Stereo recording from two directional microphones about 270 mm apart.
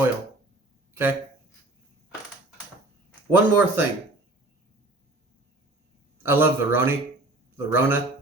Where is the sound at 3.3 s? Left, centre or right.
Centre.